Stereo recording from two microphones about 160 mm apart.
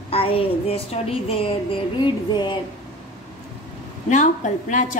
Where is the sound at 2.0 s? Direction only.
30° left (ahead or behind).